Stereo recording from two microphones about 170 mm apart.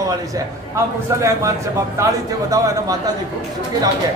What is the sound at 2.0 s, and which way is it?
Speech, 20° right (ahead or behind).